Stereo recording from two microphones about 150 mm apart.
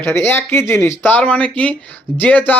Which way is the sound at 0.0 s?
15° left (ahead or behind).